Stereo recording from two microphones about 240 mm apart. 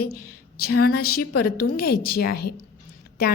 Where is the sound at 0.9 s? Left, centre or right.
Left.